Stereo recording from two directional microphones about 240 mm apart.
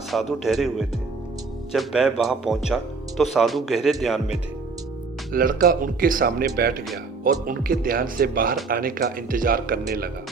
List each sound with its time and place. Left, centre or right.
0.1 s speech: centre
5.3 s speech: right